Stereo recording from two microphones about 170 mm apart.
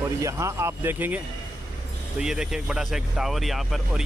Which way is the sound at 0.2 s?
20° right (ahead or behind).